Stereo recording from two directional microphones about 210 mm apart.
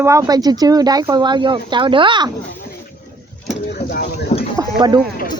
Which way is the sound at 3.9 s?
45° left (ahead or behind).